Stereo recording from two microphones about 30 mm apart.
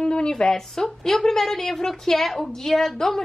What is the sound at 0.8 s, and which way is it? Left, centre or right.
A woman's voice, centre.